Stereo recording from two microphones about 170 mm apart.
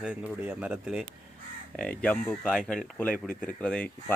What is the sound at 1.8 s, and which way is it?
Speech, 5° left (ahead or behind).